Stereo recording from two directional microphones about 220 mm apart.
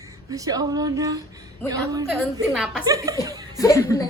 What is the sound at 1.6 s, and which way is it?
Speech, 15° right (ahead or behind).